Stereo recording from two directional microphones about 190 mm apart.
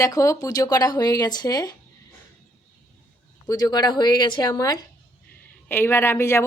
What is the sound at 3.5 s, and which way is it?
A woman's voice, 20° left (ahead or behind).